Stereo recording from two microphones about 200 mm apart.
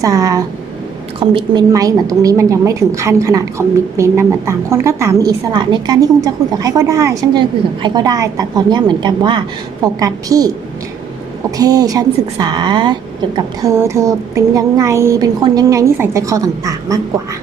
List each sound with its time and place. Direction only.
0.0 s a woman's voice: 15° right (ahead or behind)
11.5 s a woman's voice: 20° right (ahead or behind)